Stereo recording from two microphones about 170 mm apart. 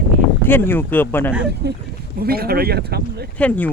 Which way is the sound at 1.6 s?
75° right (ahead or behind).